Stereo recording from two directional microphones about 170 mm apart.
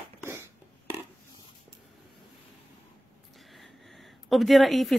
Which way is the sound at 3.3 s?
Centre (ahead or behind).